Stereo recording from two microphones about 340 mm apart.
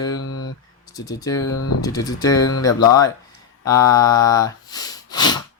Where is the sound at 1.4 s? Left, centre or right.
Left.